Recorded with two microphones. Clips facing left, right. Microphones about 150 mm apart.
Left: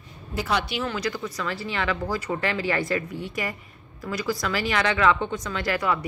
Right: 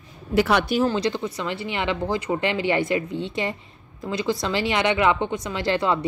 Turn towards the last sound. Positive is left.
turn(degrees=-25)  # may be behind; listen again after turning